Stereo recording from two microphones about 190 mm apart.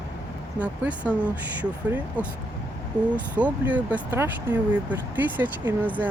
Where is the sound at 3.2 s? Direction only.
5° right (ahead or behind).